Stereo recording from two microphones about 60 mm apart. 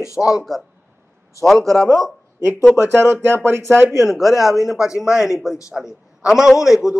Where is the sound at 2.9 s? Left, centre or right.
Right.